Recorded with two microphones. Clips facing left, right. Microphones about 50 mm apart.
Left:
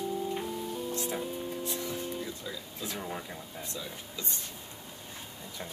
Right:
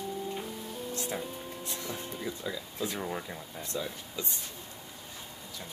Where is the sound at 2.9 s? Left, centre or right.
Centre.